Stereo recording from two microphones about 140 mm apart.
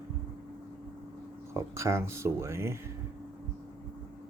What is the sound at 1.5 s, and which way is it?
Speech, 20° right (ahead or behind).